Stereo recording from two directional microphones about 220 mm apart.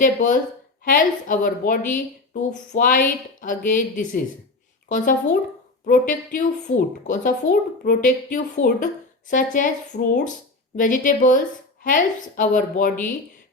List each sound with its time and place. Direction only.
0.0 s a woman's voice: 35° left (ahead or behind)
5.8 s a woman's voice: 35° left (ahead or behind)